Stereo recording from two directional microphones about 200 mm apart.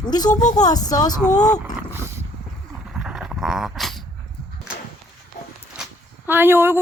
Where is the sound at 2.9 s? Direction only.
5° right (ahead or behind).